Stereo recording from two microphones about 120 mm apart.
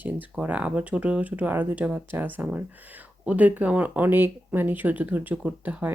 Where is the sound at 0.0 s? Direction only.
15° right (ahead or behind).